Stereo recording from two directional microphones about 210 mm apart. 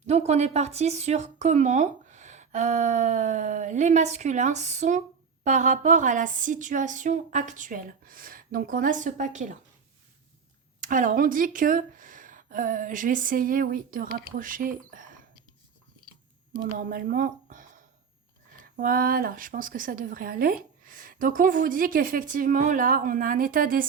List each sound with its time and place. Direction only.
0.1 s speech: 30° right (ahead or behind)
10.8 s speech: 40° right (ahead or behind)
16.5 s speech: 45° right (ahead or behind)